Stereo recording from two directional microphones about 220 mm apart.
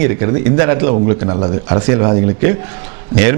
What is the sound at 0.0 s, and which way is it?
A man's voice, 10° right (ahead or behind).